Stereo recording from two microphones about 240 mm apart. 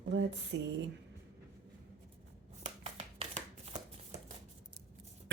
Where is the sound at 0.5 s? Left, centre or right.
Right.